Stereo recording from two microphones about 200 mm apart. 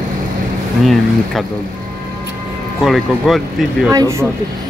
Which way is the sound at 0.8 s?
Centre (ahead or behind).